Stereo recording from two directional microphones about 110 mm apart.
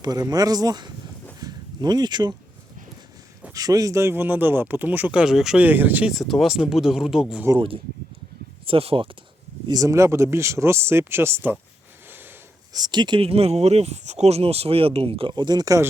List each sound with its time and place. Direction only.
0.0 s speech: 35° right (ahead or behind)
1.4 s a sound: 35° right (ahead or behind)
3.5 s speech: 35° right (ahead or behind); by 5.6 s 5° right (ahead or behind)
5.6 s speech: 15° right (ahead or behind)
6.1 s speech: centre (ahead or behind)
8.6 s speech: 60° right (ahead or behind)
9.6 s speech: 30° right (ahead or behind)
12.7 s speech: 40° right (ahead or behind)
13.2 s speech: 65° right (ahead or behind); by 15.8 s 35° right (ahead or behind)